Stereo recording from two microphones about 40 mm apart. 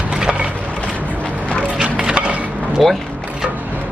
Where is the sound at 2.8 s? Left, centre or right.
Centre.